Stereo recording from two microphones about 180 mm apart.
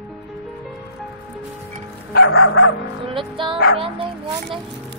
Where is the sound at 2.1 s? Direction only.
80° left.